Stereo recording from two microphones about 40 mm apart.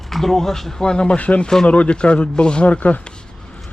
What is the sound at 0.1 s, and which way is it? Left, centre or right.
A man's voice, centre.